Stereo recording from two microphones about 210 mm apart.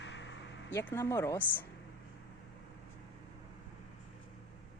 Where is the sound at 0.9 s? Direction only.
10° left (ahead or behind).